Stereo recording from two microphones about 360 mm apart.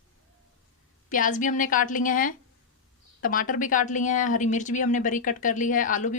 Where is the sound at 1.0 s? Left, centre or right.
Left.